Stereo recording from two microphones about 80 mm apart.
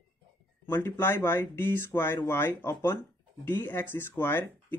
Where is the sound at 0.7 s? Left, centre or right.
Left.